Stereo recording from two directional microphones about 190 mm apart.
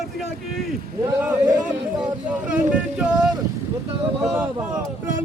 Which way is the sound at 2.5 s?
5° right (ahead or behind).